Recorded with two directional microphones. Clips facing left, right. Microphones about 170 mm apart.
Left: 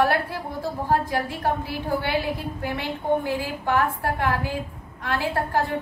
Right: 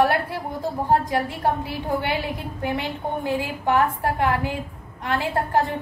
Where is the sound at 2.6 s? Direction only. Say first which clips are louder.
Right 2 dB; 20° right (ahead or behind).